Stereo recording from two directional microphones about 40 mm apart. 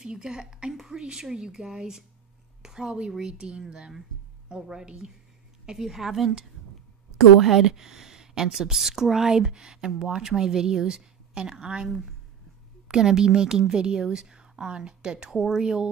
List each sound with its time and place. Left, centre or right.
0.0 s a woman's voice: centre
4.8 s speech: right
5.8 s a woman's voice: centre; by 15.3 s right
15.3 s speech: centre